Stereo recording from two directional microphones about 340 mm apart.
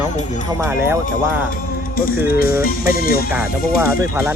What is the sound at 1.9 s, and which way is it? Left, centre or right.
Speech, left.